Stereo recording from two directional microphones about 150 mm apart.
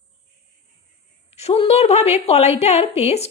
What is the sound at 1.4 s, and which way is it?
A woman's voice, 45° left (ahead or behind).